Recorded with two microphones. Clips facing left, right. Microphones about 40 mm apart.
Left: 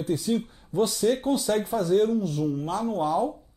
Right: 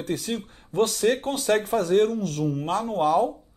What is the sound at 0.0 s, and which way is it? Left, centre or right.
Speech, right.